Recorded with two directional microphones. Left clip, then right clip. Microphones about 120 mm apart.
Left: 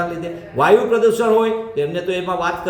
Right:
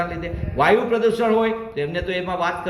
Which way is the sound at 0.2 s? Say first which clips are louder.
Left 2 dB; 35° left (ahead or behind).